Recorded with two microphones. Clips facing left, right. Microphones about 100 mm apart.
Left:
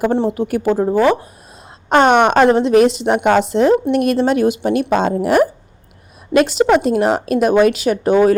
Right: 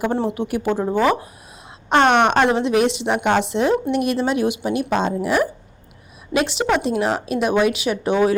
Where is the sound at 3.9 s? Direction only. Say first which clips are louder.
Left 5 dB; 50° left (ahead or behind).